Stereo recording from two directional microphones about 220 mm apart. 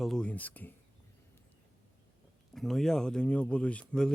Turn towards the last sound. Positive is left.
turn(degrees=5)  # may be behind; listen again after turning